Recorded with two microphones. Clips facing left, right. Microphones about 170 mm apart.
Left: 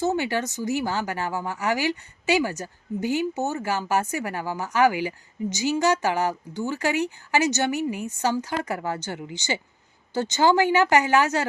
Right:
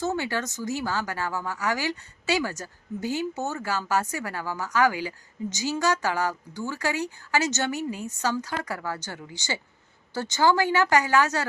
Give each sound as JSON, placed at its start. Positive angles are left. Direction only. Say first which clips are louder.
{"t": 0.0, "sound": "a woman's voice", "louder": "left 4 dB", "side_deg": 15}